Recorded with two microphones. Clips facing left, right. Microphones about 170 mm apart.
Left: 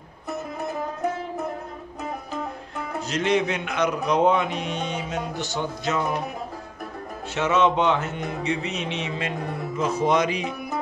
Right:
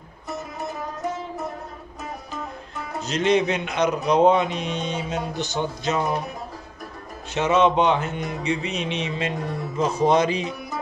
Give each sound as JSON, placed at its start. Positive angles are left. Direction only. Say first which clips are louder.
{"t": 3.1, "sound": "a man's voice", "louder": "right 3 dB", "side_deg": -20}
{"t": 7.3, "sound": "a man's voice", "louder": "right 2 dB", "side_deg": -20}
{"t": 9.8, "sound": "music", "louder": "right 2 dB", "side_deg": -30}